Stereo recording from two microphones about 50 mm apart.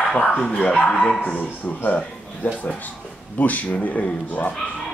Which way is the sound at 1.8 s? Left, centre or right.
Left.